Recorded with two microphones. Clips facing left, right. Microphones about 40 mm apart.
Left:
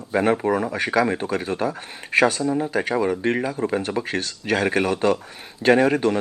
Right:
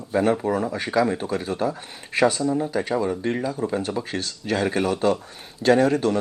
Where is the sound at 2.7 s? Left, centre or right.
Left.